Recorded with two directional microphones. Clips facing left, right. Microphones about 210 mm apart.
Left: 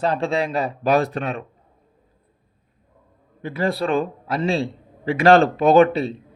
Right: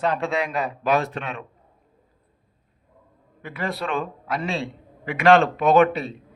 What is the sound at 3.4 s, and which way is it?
A man's voice, 30° left (ahead or behind).